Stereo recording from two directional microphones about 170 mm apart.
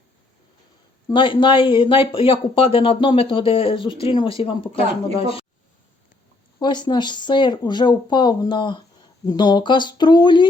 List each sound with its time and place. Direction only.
1.0 s speech: 30° left (ahead or behind)
6.6 s speech: 25° left (ahead or behind)